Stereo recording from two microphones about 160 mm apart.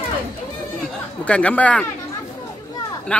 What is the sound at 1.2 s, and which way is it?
Speech, 10° left (ahead or behind).